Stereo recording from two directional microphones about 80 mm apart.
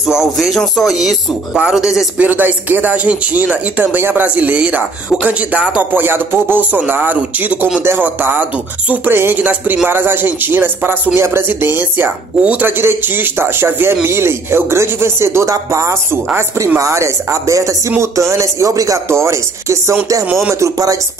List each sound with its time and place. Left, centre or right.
0.0 s speech: centre
2.1 s speech: right
5.9 s speech: right
19.0 s speech: right